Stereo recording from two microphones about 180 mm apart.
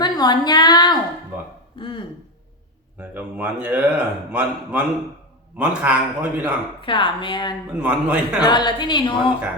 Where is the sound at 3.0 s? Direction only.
5° right (ahead or behind).